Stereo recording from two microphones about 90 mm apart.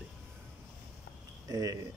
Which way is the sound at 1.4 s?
45° right (ahead or behind).